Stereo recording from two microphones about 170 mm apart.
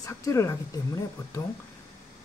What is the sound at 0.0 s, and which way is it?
Speech, 20° left (ahead or behind).